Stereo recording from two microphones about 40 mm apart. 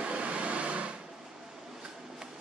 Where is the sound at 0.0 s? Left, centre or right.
Right.